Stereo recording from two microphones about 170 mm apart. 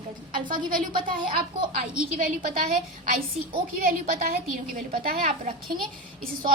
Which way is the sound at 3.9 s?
55° right (ahead or behind).